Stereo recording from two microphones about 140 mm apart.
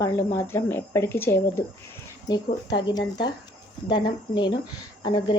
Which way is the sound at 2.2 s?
30° left (ahead or behind).